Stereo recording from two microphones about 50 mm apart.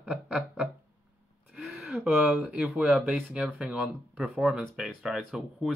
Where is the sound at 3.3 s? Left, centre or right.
Centre.